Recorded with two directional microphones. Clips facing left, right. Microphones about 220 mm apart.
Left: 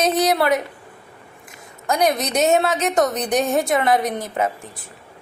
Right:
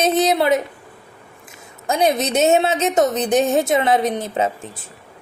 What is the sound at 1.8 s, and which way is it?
A woman's voice, 25° right (ahead or behind).